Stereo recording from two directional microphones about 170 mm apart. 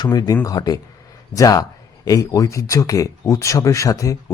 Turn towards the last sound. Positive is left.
turn(degrees=20)  # may be behind; listen again after turning